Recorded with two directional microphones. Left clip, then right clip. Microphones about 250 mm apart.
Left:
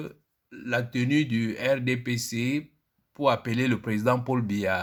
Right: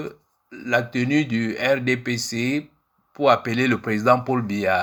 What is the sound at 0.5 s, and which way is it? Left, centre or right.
Speech, left.